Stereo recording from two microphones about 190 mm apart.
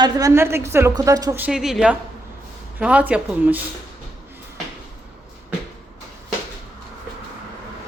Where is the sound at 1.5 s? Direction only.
Centre (ahead or behind).